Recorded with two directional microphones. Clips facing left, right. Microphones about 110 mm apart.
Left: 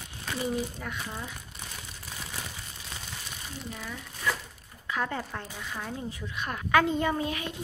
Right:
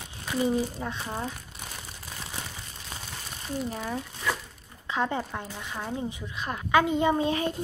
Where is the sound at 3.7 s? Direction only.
40° right (ahead or behind).